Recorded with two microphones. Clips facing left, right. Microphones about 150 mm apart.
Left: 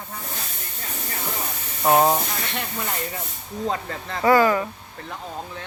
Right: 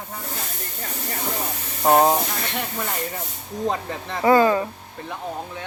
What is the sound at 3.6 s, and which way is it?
Speech, 15° right (ahead or behind).